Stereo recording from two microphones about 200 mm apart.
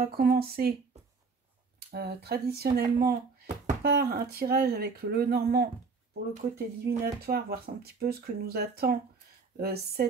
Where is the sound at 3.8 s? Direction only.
50° right (ahead or behind).